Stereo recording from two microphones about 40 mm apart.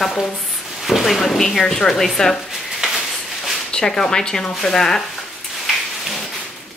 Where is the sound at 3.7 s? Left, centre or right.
Centre.